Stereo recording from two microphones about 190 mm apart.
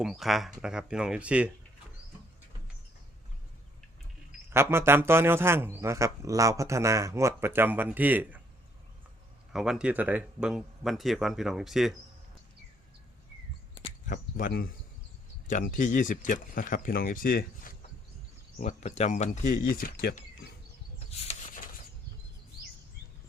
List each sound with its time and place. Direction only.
0.0 s speech: centre (ahead or behind)
4.4 s a man's voice: 15° right (ahead or behind)
9.5 s speech: centre (ahead or behind)
14.1 s speech: 45° left (ahead or behind)
18.6 s speech: 40° left (ahead or behind)
21.1 s a sound: 35° left (ahead or behind)